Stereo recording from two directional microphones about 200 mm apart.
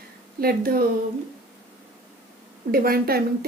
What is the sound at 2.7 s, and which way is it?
Speech, 50° right (ahead or behind).